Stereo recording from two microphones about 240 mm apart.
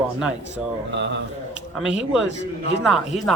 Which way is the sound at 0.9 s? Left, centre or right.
Right.